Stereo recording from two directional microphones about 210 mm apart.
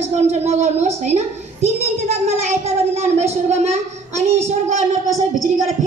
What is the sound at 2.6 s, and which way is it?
Speech, 30° right (ahead or behind).